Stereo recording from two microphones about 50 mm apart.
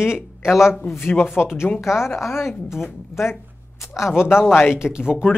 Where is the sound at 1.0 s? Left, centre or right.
Left.